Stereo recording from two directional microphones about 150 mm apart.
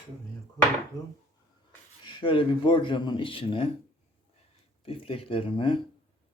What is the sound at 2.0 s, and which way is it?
Speech, 30° left (ahead or behind).